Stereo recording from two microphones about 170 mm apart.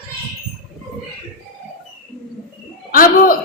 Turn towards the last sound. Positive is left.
turn(degrees=55)  # may be behind; listen again after turning